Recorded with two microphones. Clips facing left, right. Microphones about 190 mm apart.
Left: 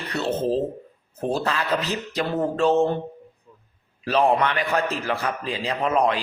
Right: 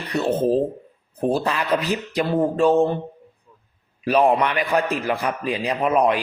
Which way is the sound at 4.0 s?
15° right (ahead or behind).